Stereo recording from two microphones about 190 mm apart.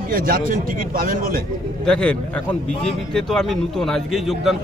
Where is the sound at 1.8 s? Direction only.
5° left (ahead or behind).